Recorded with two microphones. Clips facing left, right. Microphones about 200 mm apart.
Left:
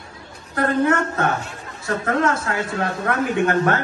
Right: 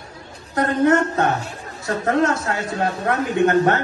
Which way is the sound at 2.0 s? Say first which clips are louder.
Right 2 dB; 25° right (ahead or behind).